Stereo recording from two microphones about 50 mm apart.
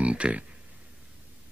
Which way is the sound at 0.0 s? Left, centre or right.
Right.